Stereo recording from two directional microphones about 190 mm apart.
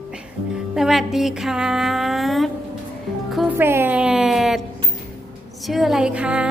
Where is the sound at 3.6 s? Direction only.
10° right (ahead or behind).